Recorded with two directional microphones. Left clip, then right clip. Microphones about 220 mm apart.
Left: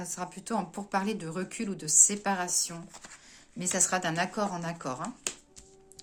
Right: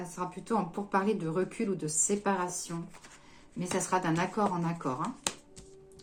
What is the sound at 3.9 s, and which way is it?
Speech, 40° left (ahead or behind).